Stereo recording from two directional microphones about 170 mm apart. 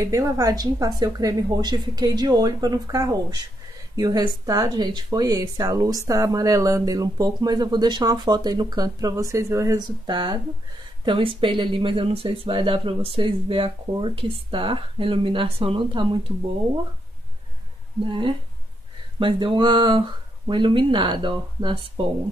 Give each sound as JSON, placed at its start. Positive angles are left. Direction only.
{"t": 0.0, "sound": "speech", "side_deg": -20}
{"t": 18.0, "sound": "speech", "side_deg": -30}